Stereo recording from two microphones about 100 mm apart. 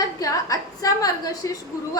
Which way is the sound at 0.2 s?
35° left (ahead or behind).